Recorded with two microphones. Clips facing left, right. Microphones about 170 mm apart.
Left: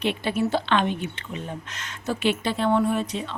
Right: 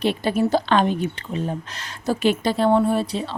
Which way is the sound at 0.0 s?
40° right (ahead or behind).